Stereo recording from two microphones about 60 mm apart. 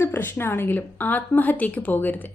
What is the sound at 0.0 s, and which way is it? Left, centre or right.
A woman's voice, left.